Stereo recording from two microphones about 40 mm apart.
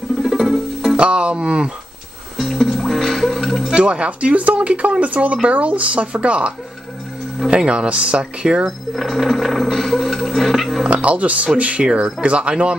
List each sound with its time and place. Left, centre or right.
0.2 s music: centre
0.9 s speech: right
2.3 s music: centre
3.7 s speech: right
8.6 s speech: centre
10.9 s speech: right